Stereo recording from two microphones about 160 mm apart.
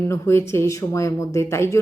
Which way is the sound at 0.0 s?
15° left (ahead or behind).